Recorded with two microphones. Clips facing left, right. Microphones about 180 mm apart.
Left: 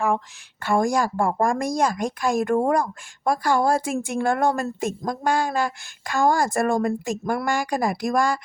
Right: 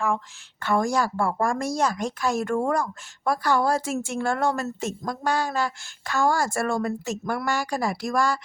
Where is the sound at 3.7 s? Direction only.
55° left (ahead or behind).